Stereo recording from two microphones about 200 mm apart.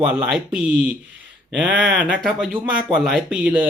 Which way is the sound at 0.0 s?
5° right (ahead or behind).